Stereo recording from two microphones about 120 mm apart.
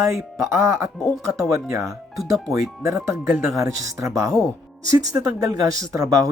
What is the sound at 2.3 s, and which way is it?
Speech, 25° right (ahead or behind).